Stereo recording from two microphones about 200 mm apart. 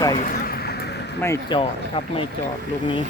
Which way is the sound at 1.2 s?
15° left (ahead or behind).